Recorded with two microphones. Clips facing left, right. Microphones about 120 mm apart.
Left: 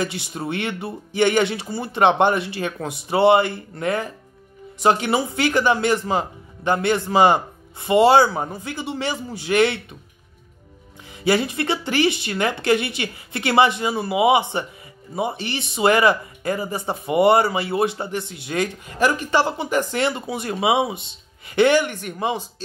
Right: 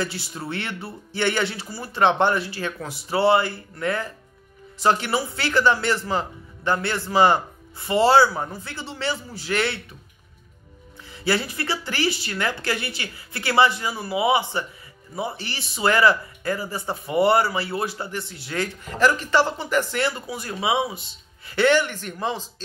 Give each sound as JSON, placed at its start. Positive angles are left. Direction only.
{"t": 0.0, "sound": "speech", "side_deg": 20}
{"t": 11.2, "sound": "speech", "side_deg": 20}